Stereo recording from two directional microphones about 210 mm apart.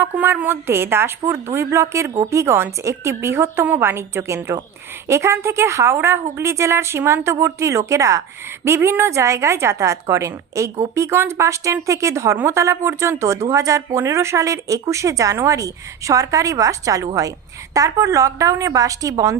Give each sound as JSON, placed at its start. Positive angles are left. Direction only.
{"t": 0.0, "sound": "a woman's voice", "side_deg": -10}